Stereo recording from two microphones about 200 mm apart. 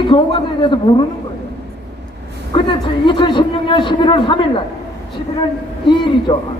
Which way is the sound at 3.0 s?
25° left (ahead or behind).